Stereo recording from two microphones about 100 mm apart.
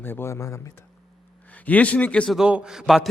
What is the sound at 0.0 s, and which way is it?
Speech, 25° left (ahead or behind).